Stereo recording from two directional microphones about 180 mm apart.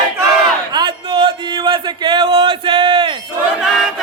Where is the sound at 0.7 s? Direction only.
25° right (ahead or behind).